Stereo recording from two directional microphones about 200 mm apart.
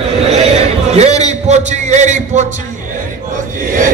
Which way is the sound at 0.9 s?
35° right (ahead or behind).